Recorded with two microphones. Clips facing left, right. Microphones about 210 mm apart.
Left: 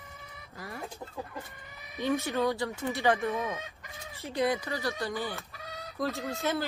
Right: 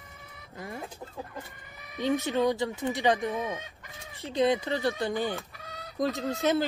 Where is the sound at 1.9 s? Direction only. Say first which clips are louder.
Right 2 dB; 15° right (ahead or behind).